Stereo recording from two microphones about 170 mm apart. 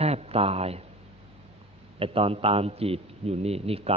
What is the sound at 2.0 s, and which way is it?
A man's voice, 35° right (ahead or behind).